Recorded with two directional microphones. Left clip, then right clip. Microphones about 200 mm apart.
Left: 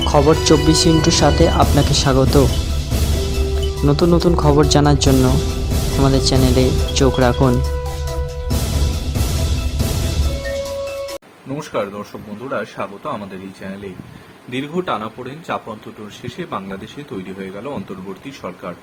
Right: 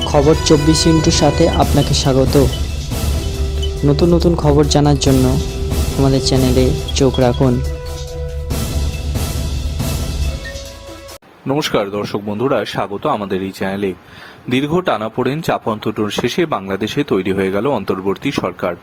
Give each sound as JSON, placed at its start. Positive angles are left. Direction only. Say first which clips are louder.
{"t": 0.0, "sound": "speech", "louder": "right 1 dB", "side_deg": 0}
{"t": 3.8, "sound": "speech", "louder": "right 2 dB", "side_deg": 0}
{"t": 11.5, "sound": "speech", "louder": "right 6 dB", "side_deg": -45}
{"t": 14.5, "sound": "speech", "louder": "right 6 dB", "side_deg": -50}